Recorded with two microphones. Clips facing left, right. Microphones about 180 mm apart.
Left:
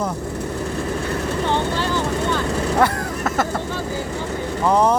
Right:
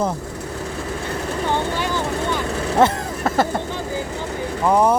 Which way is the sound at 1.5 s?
10° right (ahead or behind).